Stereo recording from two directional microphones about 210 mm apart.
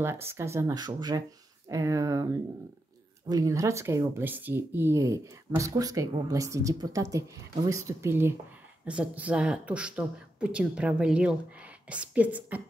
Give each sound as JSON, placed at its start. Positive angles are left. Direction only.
{"t": 0.0, "sound": "speech", "side_deg": -10}
{"t": 3.3, "sound": "speech", "side_deg": -15}